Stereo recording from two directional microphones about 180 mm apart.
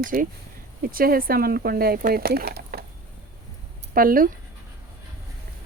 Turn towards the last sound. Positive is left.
turn(degrees=-50)  # may be behind; listen again after turning